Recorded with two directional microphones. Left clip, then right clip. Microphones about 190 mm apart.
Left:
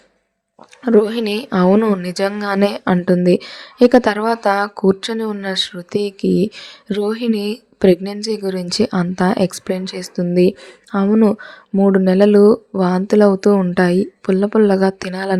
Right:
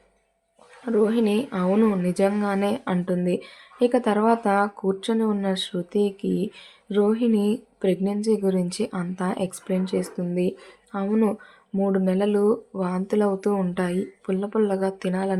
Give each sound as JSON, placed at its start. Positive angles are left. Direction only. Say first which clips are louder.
{"t": 0.9, "sound": "speech", "louder": "left 7 dB", "side_deg": 45}